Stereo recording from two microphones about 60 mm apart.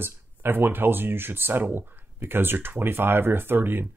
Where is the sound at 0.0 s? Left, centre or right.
Right.